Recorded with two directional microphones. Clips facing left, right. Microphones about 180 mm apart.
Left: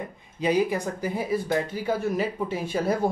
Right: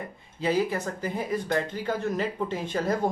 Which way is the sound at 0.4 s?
15° left (ahead or behind).